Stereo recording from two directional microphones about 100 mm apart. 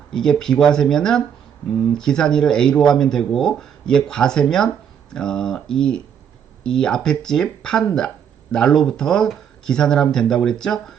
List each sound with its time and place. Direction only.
0.1 s speech: 5° left (ahead or behind)